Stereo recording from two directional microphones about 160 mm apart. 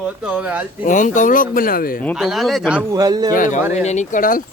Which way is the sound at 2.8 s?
25° right (ahead or behind).